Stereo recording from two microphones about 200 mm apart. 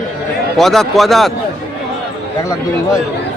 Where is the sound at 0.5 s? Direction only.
Centre (ahead or behind).